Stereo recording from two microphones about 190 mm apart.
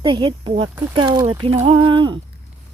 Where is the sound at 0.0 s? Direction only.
25° right (ahead or behind).